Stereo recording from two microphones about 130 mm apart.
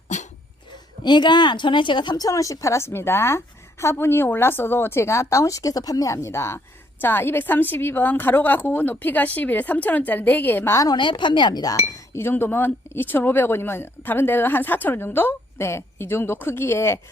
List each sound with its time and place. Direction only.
1.0 s speech: 35° left (ahead or behind)
10.9 s speech: 40° left (ahead or behind); by 17.0 s 20° left (ahead or behind)